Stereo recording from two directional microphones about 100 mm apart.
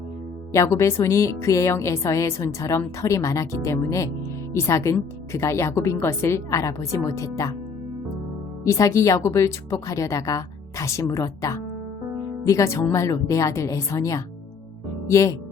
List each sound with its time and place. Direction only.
0.5 s a woman's voice: 30° left (ahead or behind)
8.6 s a woman's voice: 35° left (ahead or behind)